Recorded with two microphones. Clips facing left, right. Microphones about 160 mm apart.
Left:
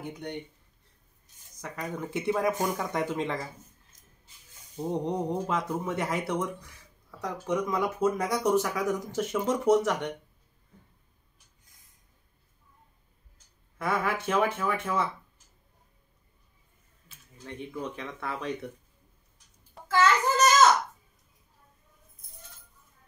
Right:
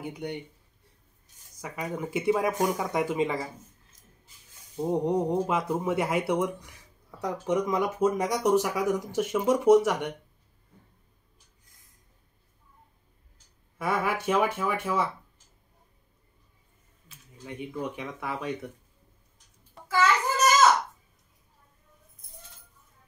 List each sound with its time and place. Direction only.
0.1 s speech: 10° right (ahead or behind)
1.6 s speech: 5° right (ahead or behind)
5.0 s speech: 5° right (ahead or behind)
13.7 s speech: 15° right (ahead or behind)
17.1 s speech: 10° right (ahead or behind)
19.9 s child singing: 10° right (ahead or behind)